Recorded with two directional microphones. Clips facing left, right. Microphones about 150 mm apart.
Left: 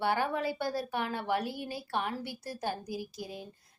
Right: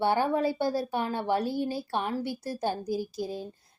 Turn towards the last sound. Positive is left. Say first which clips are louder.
# right 8 dB
turn(degrees=-30)  # may be behind; listen again after turning